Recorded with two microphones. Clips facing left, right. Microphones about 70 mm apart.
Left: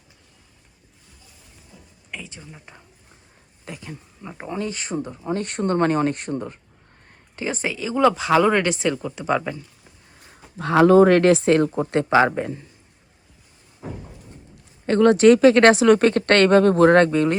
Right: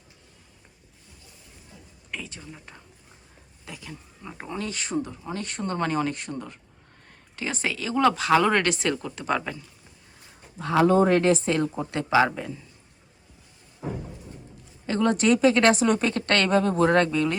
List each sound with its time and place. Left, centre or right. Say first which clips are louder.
2.2 s speech: even; centre
3.7 s speech: left 5 dB; left
4.2 s speech: left 5 dB; centre
5.4 s speech: left 7 dB; left
7.3 s speech: left 3 dB; left
10.6 s speech: left 6 dB; left
14.8 s speech: left 8 dB; left